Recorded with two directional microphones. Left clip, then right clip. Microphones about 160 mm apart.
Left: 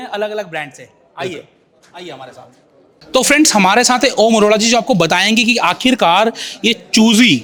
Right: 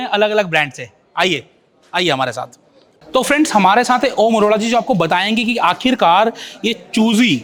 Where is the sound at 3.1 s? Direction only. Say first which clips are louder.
Left 2 dB; 20° left (ahead or behind).